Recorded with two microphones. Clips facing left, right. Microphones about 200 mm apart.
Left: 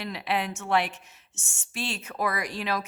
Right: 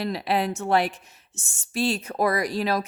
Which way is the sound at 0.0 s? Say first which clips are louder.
Right 5 dB; 35° right (ahead or behind).